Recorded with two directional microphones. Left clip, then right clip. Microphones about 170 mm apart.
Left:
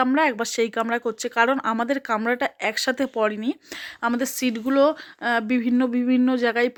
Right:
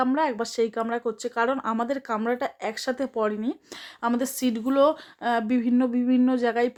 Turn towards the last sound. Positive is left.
turn(degrees=20)  # may be behind; listen again after turning